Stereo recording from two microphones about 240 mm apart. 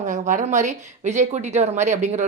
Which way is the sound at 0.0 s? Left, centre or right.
Right.